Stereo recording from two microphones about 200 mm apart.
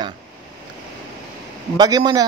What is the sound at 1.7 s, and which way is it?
Speech, 20° right (ahead or behind).